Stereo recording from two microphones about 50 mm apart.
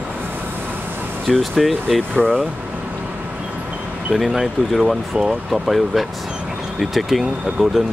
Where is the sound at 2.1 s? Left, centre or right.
Centre.